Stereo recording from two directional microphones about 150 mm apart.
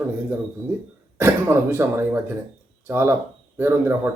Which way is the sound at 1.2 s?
15° right (ahead or behind).